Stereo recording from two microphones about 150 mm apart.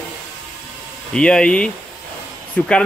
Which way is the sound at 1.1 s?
5° left (ahead or behind).